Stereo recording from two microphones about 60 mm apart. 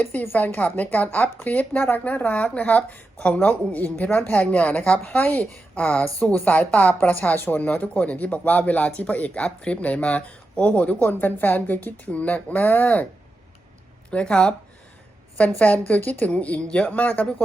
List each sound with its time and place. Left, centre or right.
0.0 s speech: left
14.1 s speech: centre
15.5 s speech: left